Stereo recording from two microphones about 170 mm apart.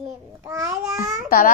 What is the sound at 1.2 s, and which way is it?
Speech, 55° left (ahead or behind).